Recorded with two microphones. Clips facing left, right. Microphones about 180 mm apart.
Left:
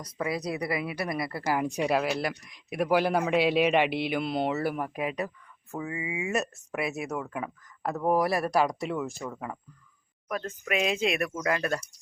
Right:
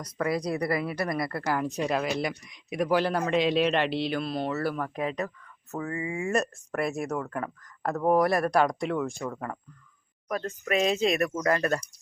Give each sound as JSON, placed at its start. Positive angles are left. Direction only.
{"t": 0.2, "sound": "speech", "side_deg": 5}
{"t": 10.7, "sound": "speech", "side_deg": -35}